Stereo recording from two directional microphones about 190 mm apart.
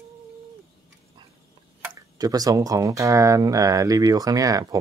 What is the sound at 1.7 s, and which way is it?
Speech, 15° right (ahead or behind).